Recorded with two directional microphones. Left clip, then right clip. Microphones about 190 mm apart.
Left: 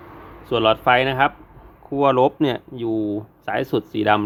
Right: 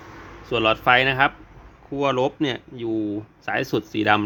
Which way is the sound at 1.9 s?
20° left (ahead or behind).